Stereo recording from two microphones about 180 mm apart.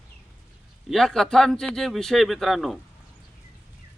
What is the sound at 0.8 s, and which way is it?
Speech, centre (ahead or behind).